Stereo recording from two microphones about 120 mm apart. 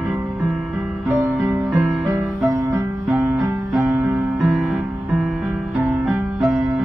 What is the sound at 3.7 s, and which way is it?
Music, 15° right (ahead or behind).